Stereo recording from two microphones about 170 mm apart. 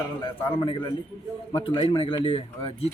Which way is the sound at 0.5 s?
35° left (ahead or behind).